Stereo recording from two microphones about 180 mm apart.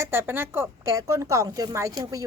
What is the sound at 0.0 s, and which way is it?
A woman's voice, 15° right (ahead or behind).